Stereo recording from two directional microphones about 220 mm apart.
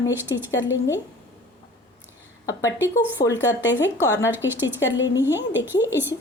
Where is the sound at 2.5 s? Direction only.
15° left (ahead or behind).